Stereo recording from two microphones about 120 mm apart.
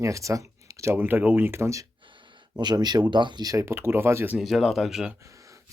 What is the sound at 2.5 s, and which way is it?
Speech, 35° right (ahead or behind).